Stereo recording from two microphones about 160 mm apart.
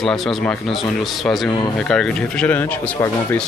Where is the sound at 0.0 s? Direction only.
Centre (ahead or behind).